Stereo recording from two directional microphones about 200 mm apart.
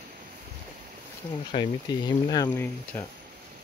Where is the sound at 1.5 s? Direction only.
20° left (ahead or behind).